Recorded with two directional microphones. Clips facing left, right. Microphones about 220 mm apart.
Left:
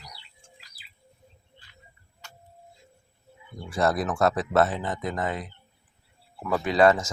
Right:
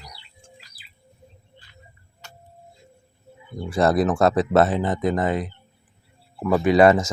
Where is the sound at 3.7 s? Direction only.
30° right (ahead or behind).